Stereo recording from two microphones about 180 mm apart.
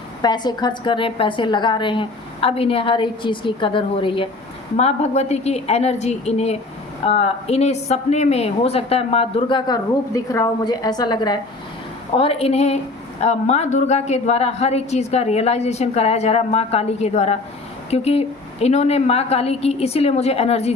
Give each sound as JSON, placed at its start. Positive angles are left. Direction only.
{"t": 0.2, "sound": "a woman's voice", "side_deg": 25}